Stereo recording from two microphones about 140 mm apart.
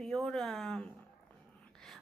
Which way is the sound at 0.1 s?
5° left (ahead or behind).